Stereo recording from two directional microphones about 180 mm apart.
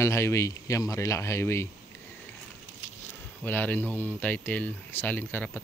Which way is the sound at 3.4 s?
10° left (ahead or behind).